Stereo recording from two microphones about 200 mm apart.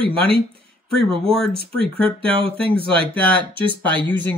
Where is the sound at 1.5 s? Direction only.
25° right (ahead or behind).